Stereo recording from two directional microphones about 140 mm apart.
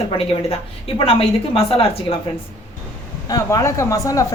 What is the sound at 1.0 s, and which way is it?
A woman's voice, 40° left (ahead or behind).